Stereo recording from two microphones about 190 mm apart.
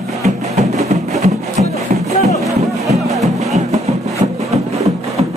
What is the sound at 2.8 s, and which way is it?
Music, centre (ahead or behind).